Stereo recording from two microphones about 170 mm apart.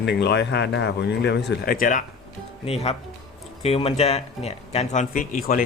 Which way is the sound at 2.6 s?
35° left (ahead or behind).